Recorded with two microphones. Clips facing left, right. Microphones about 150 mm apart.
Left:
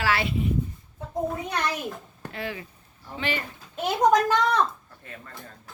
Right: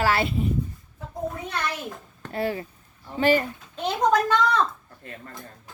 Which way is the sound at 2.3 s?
40° right (ahead or behind).